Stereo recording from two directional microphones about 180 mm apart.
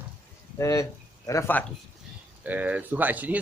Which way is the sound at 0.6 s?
15° left (ahead or behind).